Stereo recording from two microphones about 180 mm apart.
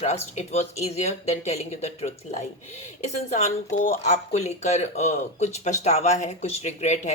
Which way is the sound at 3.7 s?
40° left (ahead or behind).